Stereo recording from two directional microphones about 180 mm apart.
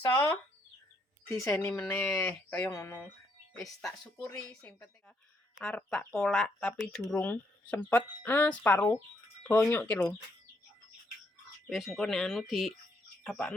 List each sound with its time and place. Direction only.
1.3 s speech: 15° left (ahead or behind)
3.6 s speech: centre (ahead or behind)
11.7 s speech: centre (ahead or behind)